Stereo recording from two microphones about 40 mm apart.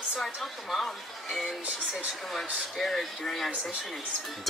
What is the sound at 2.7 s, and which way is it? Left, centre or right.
Speech, centre.